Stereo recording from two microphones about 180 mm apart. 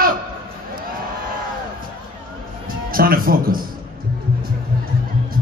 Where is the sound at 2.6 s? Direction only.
55° right (ahead or behind).